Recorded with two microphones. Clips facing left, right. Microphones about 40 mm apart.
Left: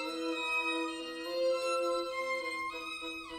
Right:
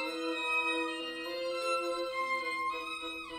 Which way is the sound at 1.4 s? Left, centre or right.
Right.